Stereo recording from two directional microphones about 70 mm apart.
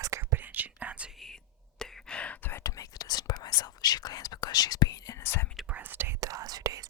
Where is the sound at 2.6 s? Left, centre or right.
Left.